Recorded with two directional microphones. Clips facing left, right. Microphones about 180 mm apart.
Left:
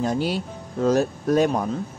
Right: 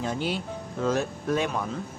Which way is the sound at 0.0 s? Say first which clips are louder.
Left 5 dB; 40° left (ahead or behind).